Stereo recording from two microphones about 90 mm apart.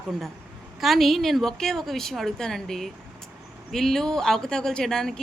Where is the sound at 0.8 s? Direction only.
Centre (ahead or behind).